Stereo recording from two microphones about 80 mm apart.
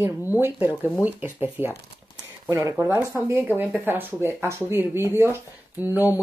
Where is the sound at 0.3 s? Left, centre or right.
Right.